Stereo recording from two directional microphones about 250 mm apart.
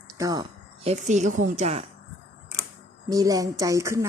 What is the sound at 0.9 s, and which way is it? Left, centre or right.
Speech, right.